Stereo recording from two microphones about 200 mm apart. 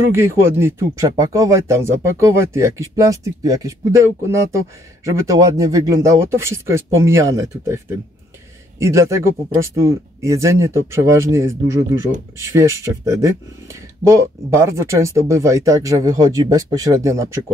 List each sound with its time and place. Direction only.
0.1 s speech: 15° right (ahead or behind)